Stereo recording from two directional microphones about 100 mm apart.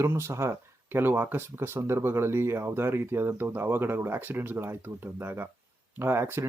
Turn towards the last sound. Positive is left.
turn(degrees=-25)  # may be behind; listen again after turning